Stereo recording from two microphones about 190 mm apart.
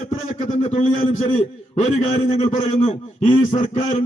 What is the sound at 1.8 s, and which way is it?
A man's voice, 35° left (ahead or behind).